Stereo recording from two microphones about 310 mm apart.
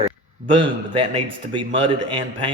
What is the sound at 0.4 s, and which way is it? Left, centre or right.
A man's voice, centre.